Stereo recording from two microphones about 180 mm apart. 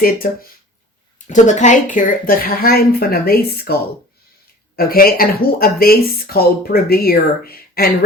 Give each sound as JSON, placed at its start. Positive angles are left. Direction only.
{"t": 0.0, "sound": "speech", "side_deg": 55}
{"t": 1.3, "sound": "speech", "side_deg": 40}
{"t": 4.8, "sound": "speech", "side_deg": 55}